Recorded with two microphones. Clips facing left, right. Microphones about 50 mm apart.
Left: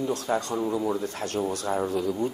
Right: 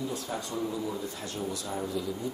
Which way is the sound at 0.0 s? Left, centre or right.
Left.